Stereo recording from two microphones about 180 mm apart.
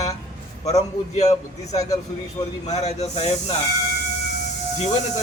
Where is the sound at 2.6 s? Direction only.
35° left (ahead or behind).